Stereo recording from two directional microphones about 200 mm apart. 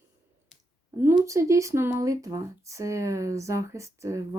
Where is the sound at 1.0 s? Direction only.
15° right (ahead or behind).